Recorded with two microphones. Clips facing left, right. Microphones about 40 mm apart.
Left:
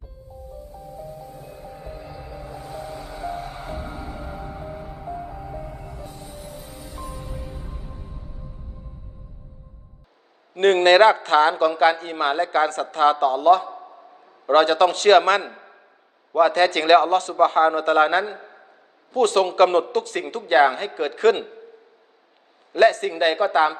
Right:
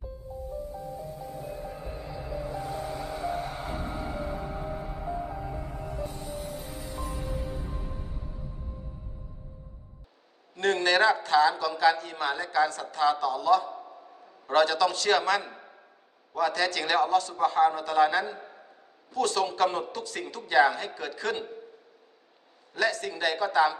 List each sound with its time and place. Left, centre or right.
10.5 s a man's voice: left
18.3 s a sound: centre
19.1 s a man's voice: left
22.7 s a man's voice: left